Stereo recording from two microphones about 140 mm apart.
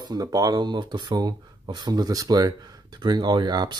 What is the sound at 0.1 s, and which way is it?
Speech, 25° right (ahead or behind).